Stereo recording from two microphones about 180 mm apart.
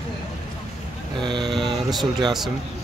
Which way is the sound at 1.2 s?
25° right (ahead or behind).